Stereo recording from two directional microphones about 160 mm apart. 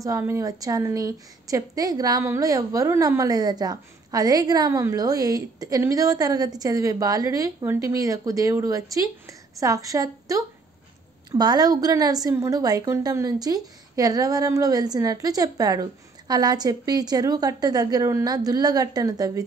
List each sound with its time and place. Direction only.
0.0 s a woman's voice: 20° right (ahead or behind)